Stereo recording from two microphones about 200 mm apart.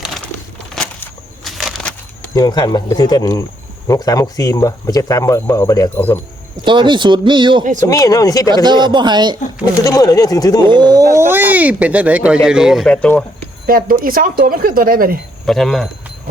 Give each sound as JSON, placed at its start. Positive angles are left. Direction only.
{"t": 1.5, "sound": "a sound", "side_deg": 0}
{"t": 2.3, "sound": "speech", "side_deg": 20}
{"t": 6.7, "sound": "speech", "side_deg": -25}
{"t": 7.6, "sound": "speech", "side_deg": -40}
{"t": 7.9, "sound": "speech", "side_deg": 15}
{"t": 8.4, "sound": "speech", "side_deg": -20}
{"t": 9.8, "sound": "speech", "side_deg": 20}
{"t": 10.7, "sound": "speech", "side_deg": -20}
{"t": 13.7, "sound": "speech", "side_deg": -45}
{"t": 15.4, "sound": "speech", "side_deg": 0}